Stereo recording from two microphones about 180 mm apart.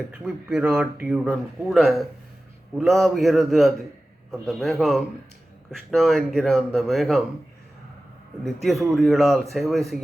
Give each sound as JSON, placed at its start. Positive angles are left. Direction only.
{"t": 0.1, "sound": "speech", "side_deg": -5}
{"t": 8.6, "sound": "speech", "side_deg": 0}